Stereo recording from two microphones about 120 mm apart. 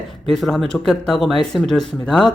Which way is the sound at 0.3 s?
Centre (ahead or behind).